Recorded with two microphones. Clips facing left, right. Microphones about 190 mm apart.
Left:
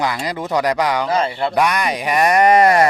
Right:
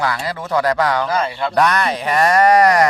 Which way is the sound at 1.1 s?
25° left (ahead or behind).